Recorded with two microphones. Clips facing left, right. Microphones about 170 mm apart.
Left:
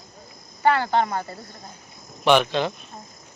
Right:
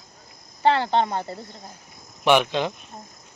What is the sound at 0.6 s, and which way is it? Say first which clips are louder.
A man's voice: even; 25° right (ahead or behind).